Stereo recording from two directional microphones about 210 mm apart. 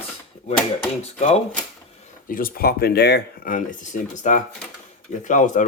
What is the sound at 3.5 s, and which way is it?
Speech, 35° left (ahead or behind).